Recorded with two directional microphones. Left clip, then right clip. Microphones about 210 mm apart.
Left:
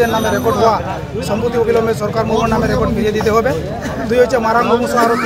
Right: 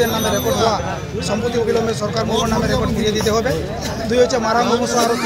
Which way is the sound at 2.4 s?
5° left (ahead or behind).